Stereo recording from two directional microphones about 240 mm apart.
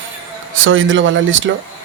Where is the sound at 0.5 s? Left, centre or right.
Right.